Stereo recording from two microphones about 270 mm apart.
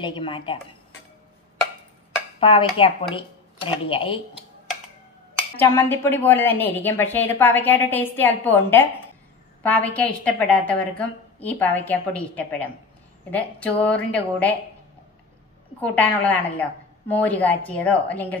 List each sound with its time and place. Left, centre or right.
0.0 s a woman's voice: centre
2.4 s speech: centre
5.6 s a woman's voice: centre
15.8 s a woman's voice: centre